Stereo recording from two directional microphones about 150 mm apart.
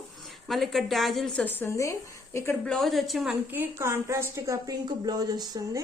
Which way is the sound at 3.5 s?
15° right (ahead or behind).